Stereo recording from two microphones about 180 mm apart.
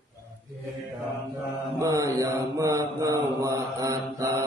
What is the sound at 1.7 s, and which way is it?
Mantra, 15° right (ahead or behind).